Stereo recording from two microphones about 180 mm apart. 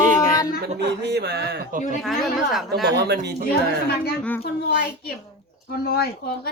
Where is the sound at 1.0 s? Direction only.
65° right (ahead or behind).